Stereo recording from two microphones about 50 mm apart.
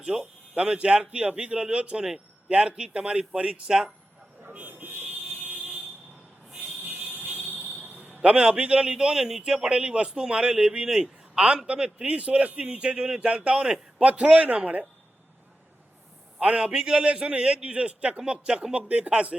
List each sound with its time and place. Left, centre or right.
0.0 s a man's voice: centre
3.7 s speech: centre
4.5 s buzzer: right
5.4 s vehicle: right
7.3 s vehicle: right
7.9 s a man's voice: right
16.4 s a man's voice: right